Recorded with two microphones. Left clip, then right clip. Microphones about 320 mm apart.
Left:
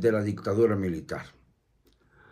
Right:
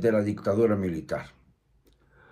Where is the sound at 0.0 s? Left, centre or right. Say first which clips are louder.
Right 1 dB; centre.